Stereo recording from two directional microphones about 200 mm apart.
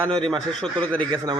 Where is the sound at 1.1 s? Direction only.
20° right (ahead or behind).